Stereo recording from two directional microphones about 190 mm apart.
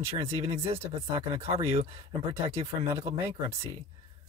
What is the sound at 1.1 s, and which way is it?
Speech, 30° right (ahead or behind).